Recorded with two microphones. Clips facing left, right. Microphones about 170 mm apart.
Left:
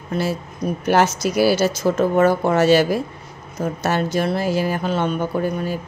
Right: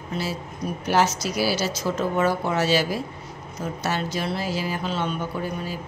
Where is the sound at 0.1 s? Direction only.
50° left (ahead or behind).